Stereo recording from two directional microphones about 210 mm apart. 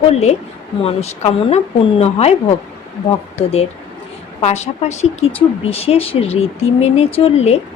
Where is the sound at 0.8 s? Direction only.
30° left (ahead or behind).